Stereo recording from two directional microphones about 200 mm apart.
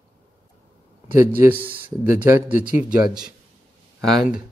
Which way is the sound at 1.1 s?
10° right (ahead or behind).